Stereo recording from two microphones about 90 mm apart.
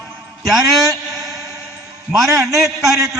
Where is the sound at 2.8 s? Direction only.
35° right (ahead or behind).